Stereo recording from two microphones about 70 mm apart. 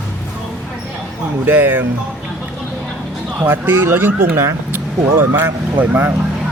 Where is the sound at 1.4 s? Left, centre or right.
Right.